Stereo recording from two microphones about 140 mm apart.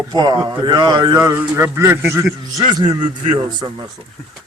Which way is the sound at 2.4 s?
30° right (ahead or behind).